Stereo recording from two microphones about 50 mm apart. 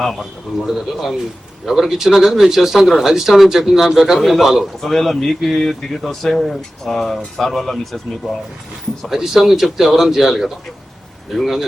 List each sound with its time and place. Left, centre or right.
0.0 s speech: centre
4.9 s speech: centre
8.2 s speech: centre